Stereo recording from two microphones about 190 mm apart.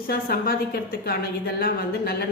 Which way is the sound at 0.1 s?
55° left (ahead or behind).